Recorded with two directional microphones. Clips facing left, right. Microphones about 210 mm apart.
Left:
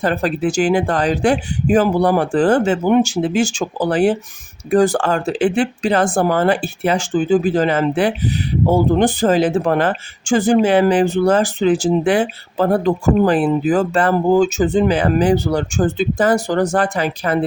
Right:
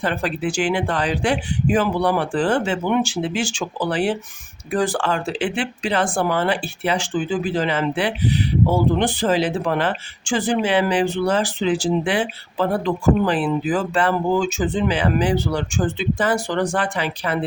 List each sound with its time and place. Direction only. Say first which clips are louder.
0.0 s speech: left 5 dB; 40° left (ahead or behind)